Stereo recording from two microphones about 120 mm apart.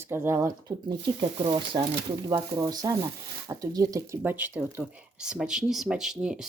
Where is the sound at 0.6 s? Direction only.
40° right (ahead or behind).